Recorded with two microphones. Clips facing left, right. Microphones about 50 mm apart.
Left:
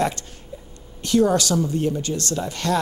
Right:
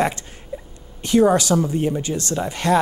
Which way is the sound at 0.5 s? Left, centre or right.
Right.